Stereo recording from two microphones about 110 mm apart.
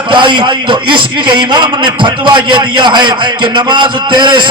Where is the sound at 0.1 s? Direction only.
45° right (ahead or behind).